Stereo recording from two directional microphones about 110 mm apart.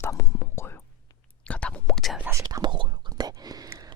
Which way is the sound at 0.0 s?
25° left (ahead or behind).